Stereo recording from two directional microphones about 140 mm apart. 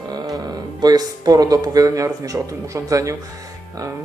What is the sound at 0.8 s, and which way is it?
Speech, 30° right (ahead or behind).